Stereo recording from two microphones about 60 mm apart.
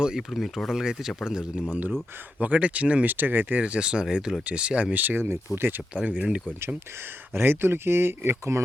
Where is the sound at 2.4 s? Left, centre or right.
Right.